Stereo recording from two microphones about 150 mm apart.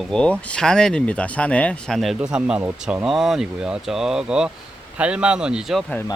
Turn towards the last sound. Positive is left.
turn(degrees=0)  # may be behind; listen again after turning